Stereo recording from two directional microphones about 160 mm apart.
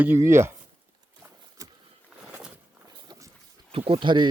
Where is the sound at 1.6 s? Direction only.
20° right (ahead or behind).